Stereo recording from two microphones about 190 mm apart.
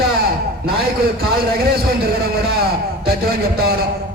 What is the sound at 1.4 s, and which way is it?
Speech, 55° right (ahead or behind).